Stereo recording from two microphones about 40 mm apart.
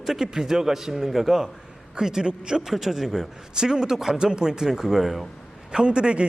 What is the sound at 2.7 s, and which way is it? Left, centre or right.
A man's voice, centre.